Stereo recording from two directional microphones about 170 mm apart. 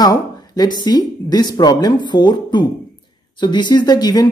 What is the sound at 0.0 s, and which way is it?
Speech, 20° left (ahead or behind).